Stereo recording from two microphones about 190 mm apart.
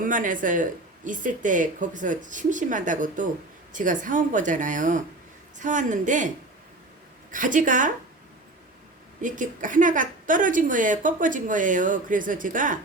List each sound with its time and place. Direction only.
0.0 s a woman's voice: 45° right (ahead or behind)
9.2 s speech: 45° right (ahead or behind)